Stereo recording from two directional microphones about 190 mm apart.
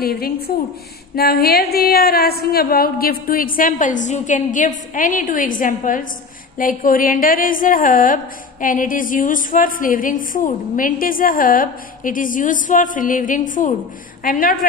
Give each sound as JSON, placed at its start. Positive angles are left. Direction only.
{"t": 0.0, "sound": "speech", "side_deg": 55}